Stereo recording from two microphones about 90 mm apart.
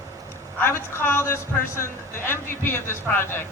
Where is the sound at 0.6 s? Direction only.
25° left (ahead or behind).